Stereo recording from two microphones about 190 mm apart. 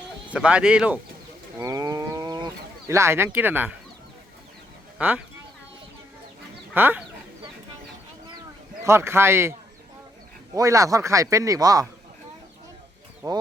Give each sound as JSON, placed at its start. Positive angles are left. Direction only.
{"t": 0.3, "sound": "speech", "side_deg": -5}
{"t": 1.5, "sound": "livestock", "side_deg": -20}
{"t": 4.9, "sound": "speech", "side_deg": -5}
{"t": 6.7, "sound": "speech", "side_deg": -10}
{"t": 8.8, "sound": "speech", "side_deg": -15}
{"t": 13.2, "sound": "speech", "side_deg": -20}